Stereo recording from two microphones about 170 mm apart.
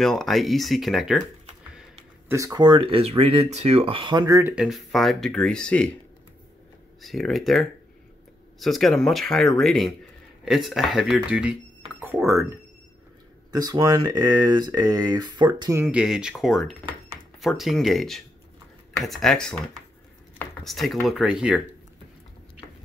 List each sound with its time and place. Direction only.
0.0 s speech: centre (ahead or behind)
1.8 s speech: 15° right (ahead or behind)
4.4 s speech: 10° right (ahead or behind)
7.0 s speech: centre (ahead or behind)
13.5 s speech: 25° right (ahead or behind)
15.8 s speech: 5° right (ahead or behind)
20.6 s speech: centre (ahead or behind)
22.6 s a sound: 5° right (ahead or behind)